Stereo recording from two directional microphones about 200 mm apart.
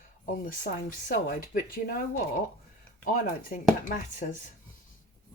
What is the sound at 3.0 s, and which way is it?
Speech, 45° left (ahead or behind).